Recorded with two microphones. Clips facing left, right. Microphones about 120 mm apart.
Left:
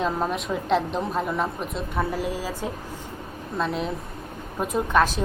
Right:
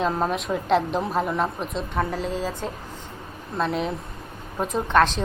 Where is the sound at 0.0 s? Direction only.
Centre (ahead or behind).